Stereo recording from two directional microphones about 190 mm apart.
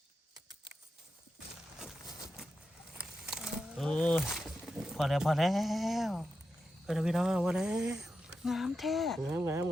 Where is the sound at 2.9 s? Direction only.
5° right (ahead or behind).